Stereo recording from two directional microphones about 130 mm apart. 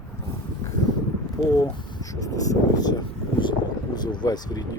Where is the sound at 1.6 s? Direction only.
30° left (ahead or behind).